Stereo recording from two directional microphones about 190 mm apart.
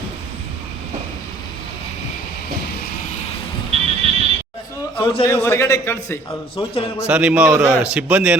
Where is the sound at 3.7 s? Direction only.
30° right (ahead or behind).